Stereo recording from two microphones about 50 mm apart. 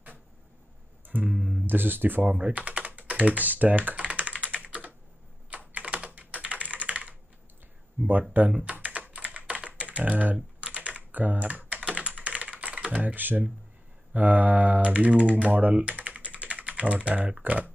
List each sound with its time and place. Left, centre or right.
1.0 s guitar: right
1.3 s guitar: centre
1.7 s speech: right
2.2 s typing: right
5.5 s computer keyboard: right
8.1 s speech: right
8.6 s computer keyboard: right
9.8 s typing: right
14.1 s speech: right
15.7 s typing: right
17.4 s speech: right